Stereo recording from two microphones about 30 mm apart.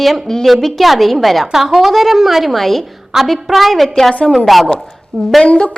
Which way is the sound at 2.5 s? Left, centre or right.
Centre.